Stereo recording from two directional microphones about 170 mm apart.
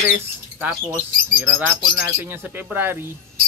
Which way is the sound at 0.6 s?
10° right (ahead or behind).